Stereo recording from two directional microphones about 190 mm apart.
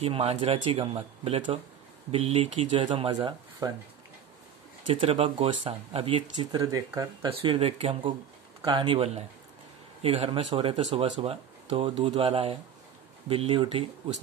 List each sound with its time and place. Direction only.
0.0 s speech: 30° right (ahead or behind)
5.0 s speech: 30° right (ahead or behind)
6.5 s speech: 20° right (ahead or behind)
7.2 s speech: 30° right (ahead or behind)